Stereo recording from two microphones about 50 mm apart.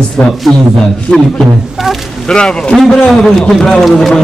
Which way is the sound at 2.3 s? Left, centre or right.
Centre.